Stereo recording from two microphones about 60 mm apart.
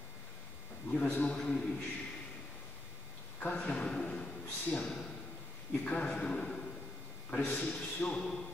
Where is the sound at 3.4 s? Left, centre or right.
Left.